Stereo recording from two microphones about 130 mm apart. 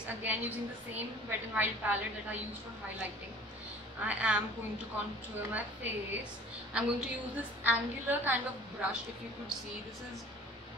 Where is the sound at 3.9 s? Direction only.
10° right (ahead or behind).